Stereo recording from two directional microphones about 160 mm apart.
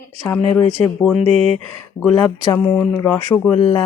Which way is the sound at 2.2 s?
20° left (ahead or behind).